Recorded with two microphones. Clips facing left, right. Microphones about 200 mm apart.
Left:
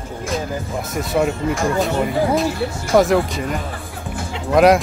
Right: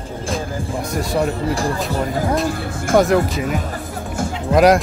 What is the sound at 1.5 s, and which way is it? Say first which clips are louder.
Speech: left 1 dB; 35° right (ahead or behind).